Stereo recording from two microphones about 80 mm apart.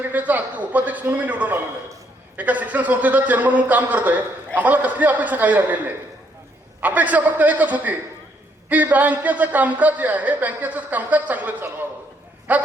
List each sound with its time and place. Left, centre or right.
0.1 s speech: right
12.5 s dog: centre